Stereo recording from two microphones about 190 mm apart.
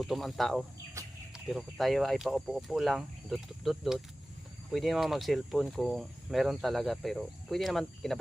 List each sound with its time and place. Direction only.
0.0 s speech: centre (ahead or behind)
1.0 s chicken: 15° right (ahead or behind)
1.3 s speech: centre (ahead or behind)